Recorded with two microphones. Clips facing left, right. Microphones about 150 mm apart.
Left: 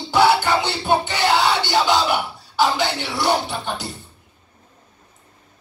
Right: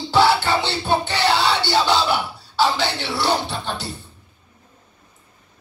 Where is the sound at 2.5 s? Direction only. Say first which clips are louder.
Left 1 dB; 20° left (ahead or behind).